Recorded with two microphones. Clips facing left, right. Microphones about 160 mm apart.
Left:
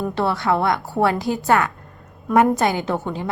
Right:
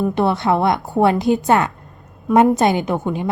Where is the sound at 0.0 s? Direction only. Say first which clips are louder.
Right 4 dB; 20° right (ahead or behind).